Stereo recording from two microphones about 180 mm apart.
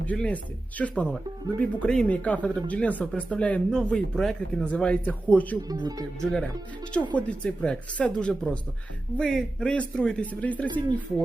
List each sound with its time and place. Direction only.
0.1 s speech: 5° left (ahead or behind)
5.6 s speech: 20° right (ahead or behind)
6.1 s a man's voice: 5° left (ahead or behind)
10.7 s speech: 25° right (ahead or behind)